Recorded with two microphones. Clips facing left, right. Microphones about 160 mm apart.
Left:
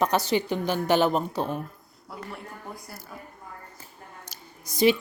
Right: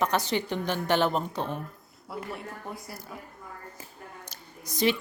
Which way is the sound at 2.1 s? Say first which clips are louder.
Right 3 dB; centre (ahead or behind).